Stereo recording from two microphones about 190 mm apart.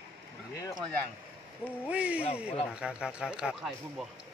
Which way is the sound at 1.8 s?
5° right (ahead or behind).